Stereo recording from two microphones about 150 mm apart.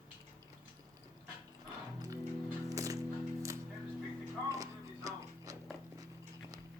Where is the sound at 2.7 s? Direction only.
20° right (ahead or behind).